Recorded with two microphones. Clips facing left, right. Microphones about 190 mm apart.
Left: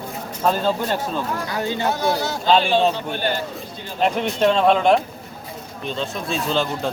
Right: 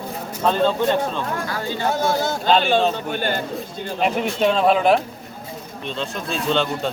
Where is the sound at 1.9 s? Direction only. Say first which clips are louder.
Right 1 dB; 50° right (ahead or behind).